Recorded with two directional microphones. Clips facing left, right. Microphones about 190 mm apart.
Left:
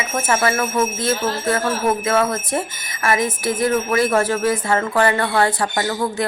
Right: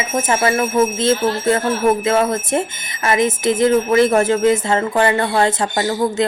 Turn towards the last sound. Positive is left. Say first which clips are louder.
# right 3 dB
turn(degrees=-25)  # may be behind; listen again after turning